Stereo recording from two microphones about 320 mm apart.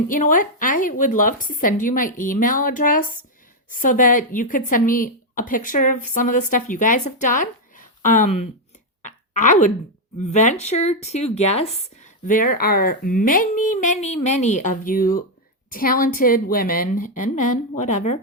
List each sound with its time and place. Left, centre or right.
0.1 s speech: left
9.0 s a sound: left
10.2 s speech: left